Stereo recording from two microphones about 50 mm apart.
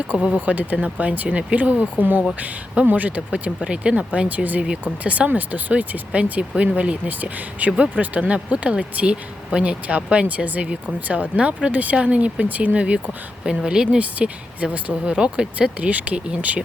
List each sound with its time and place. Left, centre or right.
0.3 s speech: right
13.5 s speech: centre